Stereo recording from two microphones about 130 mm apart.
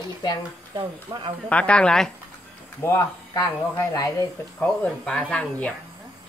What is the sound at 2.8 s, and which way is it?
Speech, 25° left (ahead or behind).